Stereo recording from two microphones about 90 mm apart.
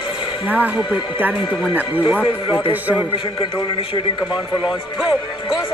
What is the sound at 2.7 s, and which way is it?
Speech, 20° right (ahead or behind).